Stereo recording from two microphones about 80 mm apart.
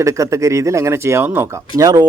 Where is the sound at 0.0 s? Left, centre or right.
Right.